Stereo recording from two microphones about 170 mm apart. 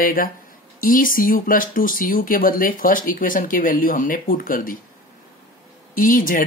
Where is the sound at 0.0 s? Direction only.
55° left (ahead or behind).